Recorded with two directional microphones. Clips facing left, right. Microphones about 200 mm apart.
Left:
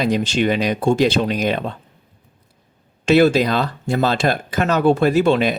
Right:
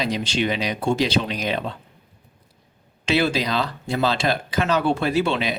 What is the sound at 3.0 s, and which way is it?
Speech, 45° left (ahead or behind).